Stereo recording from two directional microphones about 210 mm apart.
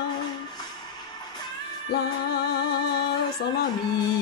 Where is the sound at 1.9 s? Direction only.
50° left (ahead or behind).